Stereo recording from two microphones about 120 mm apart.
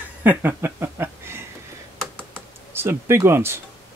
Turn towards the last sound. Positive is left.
turn(degrees=-20)  # may be behind; listen again after turning